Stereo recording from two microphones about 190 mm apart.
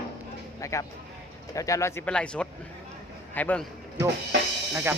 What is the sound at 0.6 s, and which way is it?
Speech, 15° left (ahead or behind).